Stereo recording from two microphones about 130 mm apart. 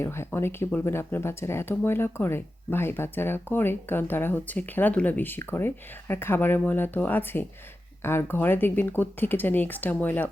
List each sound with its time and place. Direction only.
0.0 s speech: 20° left (ahead or behind)